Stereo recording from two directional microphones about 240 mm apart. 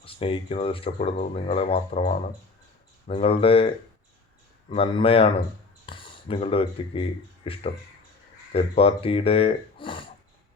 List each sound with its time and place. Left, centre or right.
0.0 s speech: left
3.1 s speech: left
4.7 s speech: left